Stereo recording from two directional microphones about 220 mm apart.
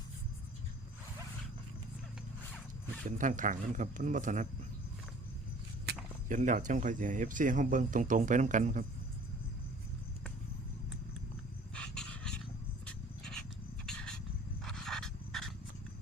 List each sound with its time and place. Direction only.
3.1 s speech: 35° right (ahead or behind)
6.2 s speech: 35° right (ahead or behind)
11.7 s dog: 5° left (ahead or behind)
12.8 s a sound: 5° left (ahead or behind)
14.6 s pant: centre (ahead or behind)